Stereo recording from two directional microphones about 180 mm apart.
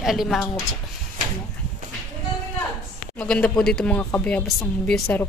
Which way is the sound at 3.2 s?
5° left (ahead or behind).